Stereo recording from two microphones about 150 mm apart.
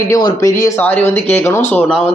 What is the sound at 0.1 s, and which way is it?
Speech, 25° left (ahead or behind).